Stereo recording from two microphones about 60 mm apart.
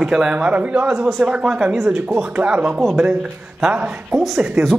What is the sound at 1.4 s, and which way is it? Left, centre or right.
Speech, centre.